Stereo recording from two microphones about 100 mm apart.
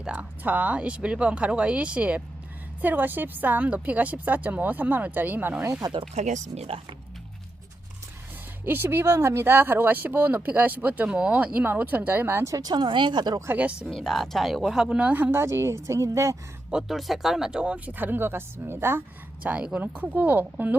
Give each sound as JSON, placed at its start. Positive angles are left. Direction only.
{"t": 0.0, "sound": "a woman's voice", "side_deg": -15}
{"t": 6.2, "sound": "speech", "side_deg": -90}
{"t": 8.6, "sound": "speech", "side_deg": -20}
{"t": 12.7, "sound": "speech", "side_deg": -55}
{"t": 13.5, "sound": "a woman's voice", "side_deg": -15}
{"t": 13.9, "sound": "a woman's voice", "side_deg": 5}
{"t": 16.7, "sound": "speech", "side_deg": 0}
{"t": 19.4, "sound": "a woman's voice", "side_deg": -10}